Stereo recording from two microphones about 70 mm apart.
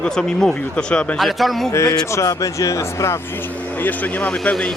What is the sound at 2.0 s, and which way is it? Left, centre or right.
Speech, left.